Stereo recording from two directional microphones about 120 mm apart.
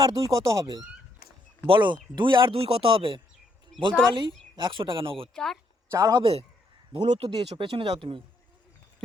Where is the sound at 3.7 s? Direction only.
Centre (ahead or behind).